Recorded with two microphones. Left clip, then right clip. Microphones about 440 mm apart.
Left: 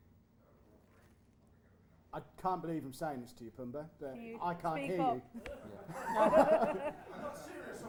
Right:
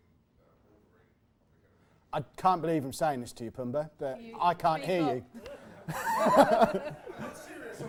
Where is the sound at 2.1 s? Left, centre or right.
Right.